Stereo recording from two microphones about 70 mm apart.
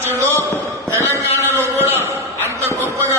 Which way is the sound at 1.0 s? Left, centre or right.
Left.